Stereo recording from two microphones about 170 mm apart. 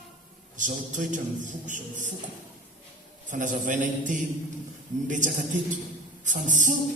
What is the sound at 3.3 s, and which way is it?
A man's voice, 50° right (ahead or behind).